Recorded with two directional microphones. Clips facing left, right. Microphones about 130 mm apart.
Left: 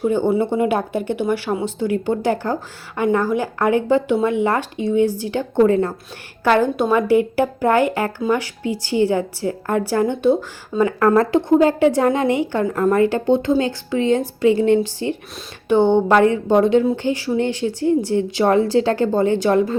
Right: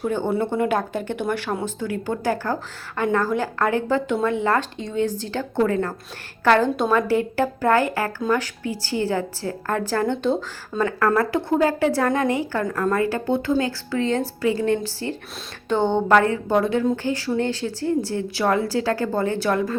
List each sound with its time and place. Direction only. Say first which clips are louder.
0.0 s a woman's voice: left 5 dB; 15° left (ahead or behind)
11.1 s speech: left 6 dB; 25° left (ahead or behind)